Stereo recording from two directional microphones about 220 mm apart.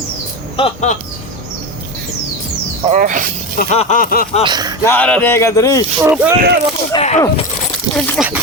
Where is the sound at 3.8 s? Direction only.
35° left (ahead or behind).